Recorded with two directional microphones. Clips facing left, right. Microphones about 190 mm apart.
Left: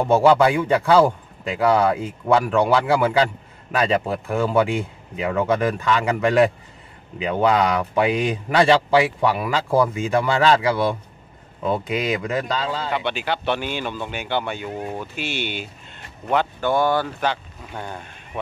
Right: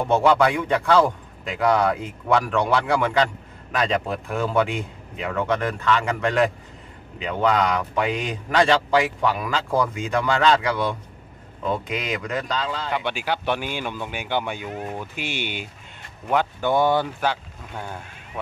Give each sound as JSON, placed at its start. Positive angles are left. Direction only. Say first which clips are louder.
{"t": 0.1, "sound": "a man's voice", "louder": "left 3 dB", "side_deg": 5}
{"t": 4.1, "sound": "speech", "louder": "left 3 dB", "side_deg": 35}
{"t": 4.5, "sound": "a man's voice", "louder": "left 2 dB", "side_deg": 5}
{"t": 12.9, "sound": "speech", "louder": "left 1 dB", "side_deg": -10}
{"t": 14.7, "sound": "a man's voice", "louder": "left 2 dB", "side_deg": 15}
{"t": 15.0, "sound": "speech", "louder": "left 2 dB", "side_deg": -15}
{"t": 16.7, "sound": "speech", "louder": "even", "side_deg": -20}
{"t": 17.2, "sound": "speech", "louder": "left 1 dB", "side_deg": -5}